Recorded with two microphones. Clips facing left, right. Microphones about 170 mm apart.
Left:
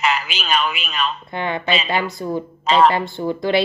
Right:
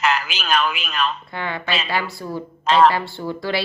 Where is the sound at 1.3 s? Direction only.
20° left (ahead or behind).